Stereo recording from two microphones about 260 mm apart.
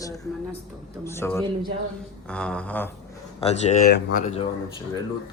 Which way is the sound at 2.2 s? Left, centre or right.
Centre.